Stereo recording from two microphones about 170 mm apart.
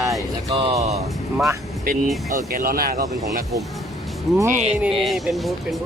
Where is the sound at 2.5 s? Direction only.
60° right (ahead or behind).